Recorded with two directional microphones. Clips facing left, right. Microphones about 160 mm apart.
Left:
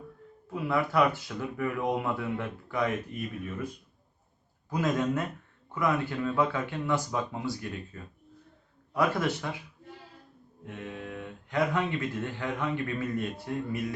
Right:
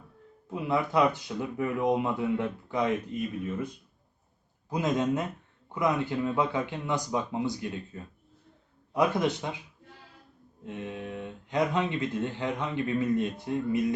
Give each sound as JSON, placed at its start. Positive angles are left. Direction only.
{"t": 0.5, "sound": "speech", "side_deg": -20}
{"t": 4.7, "sound": "speech", "side_deg": -20}
{"t": 10.7, "sound": "speech", "side_deg": -20}